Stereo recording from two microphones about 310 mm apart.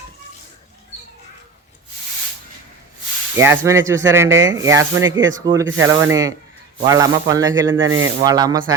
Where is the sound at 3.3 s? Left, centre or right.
Centre.